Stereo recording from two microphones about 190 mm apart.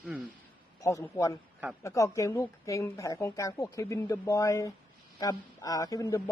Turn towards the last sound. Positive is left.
turn(degrees=15)  # may be behind; listen again after turning